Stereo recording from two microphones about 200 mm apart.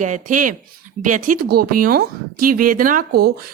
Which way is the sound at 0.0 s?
40° right (ahead or behind).